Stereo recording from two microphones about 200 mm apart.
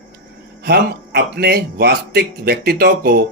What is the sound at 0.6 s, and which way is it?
Speech, 50° right (ahead or behind).